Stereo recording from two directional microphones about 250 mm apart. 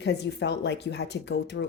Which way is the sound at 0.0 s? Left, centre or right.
Left.